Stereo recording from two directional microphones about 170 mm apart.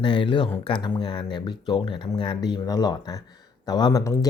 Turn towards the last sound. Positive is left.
turn(degrees=20)  # may be behind; listen again after turning